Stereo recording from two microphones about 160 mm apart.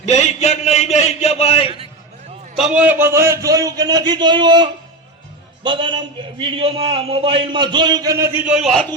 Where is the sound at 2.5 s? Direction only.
5° right (ahead or behind); by 8.2 s 25° right (ahead or behind).